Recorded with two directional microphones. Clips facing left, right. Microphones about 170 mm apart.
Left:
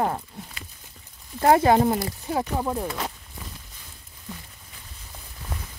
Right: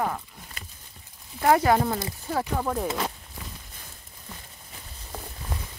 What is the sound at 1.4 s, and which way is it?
Speech, 25° left (ahead or behind).